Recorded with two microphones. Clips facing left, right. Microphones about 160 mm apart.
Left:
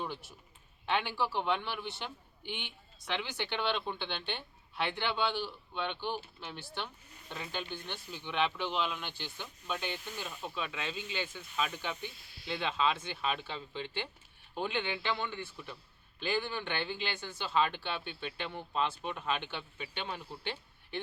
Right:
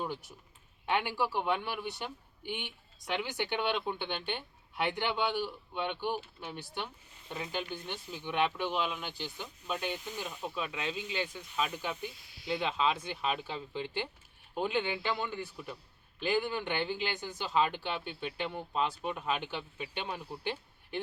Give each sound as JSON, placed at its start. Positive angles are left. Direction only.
{"t": 0.0, "sound": "a man's voice", "side_deg": -10}